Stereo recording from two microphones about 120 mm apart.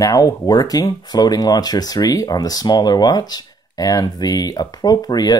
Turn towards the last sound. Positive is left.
turn(degrees=35)  # may be behind; listen again after turning